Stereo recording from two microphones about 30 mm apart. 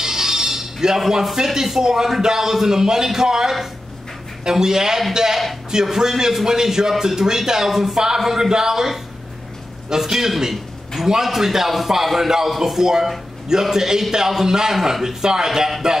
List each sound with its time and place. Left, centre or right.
0.0 s music: centre
1.2 s a man's voice: centre
8.4 s a man's voice: centre